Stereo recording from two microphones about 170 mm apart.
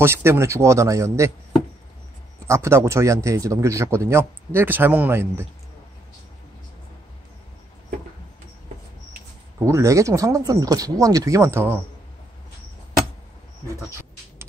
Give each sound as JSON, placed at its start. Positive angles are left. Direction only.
{"t": 0.0, "sound": "speech", "side_deg": -15}
{"t": 2.4, "sound": "speech", "side_deg": -15}
{"t": 9.6, "sound": "speech", "side_deg": -20}